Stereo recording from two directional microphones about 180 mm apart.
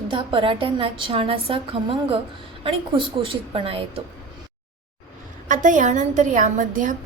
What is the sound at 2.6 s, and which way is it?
A woman's voice, 30° right (ahead or behind).